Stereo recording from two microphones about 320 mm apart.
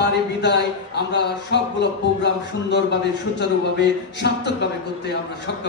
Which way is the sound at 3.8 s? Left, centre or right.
Left.